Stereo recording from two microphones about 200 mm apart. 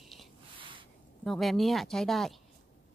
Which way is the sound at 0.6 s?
25° right (ahead or behind).